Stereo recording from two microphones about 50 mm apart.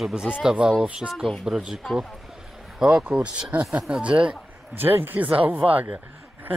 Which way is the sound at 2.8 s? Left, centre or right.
Right.